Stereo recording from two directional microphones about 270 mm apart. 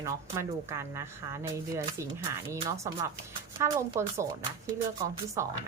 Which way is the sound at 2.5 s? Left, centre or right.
Centre.